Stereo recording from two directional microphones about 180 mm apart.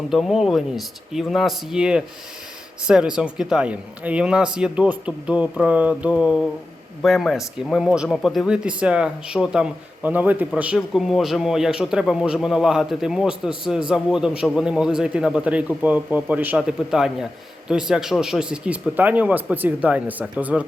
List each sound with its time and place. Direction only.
0.1 s speech: centre (ahead or behind)